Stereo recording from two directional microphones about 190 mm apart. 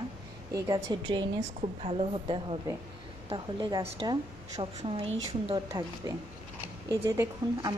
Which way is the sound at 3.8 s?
30° right (ahead or behind).